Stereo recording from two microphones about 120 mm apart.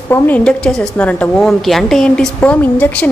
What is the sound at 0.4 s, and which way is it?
A woman's voice, 5° left (ahead or behind).